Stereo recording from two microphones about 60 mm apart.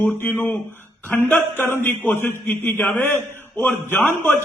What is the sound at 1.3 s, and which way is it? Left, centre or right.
A man's voice, left.